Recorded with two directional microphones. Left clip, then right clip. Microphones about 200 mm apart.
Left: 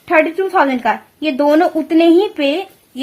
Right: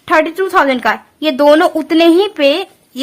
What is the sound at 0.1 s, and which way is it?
A woman's voice, 15° right (ahead or behind).